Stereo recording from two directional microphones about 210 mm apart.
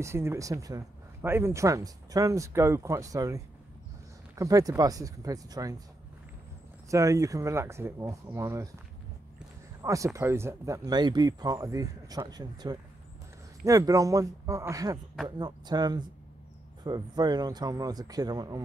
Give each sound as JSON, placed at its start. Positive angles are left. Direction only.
{"t": 0.0, "sound": "speech", "side_deg": -10}
{"t": 6.9, "sound": "speech", "side_deg": -15}
{"t": 9.8, "sound": "speech", "side_deg": -15}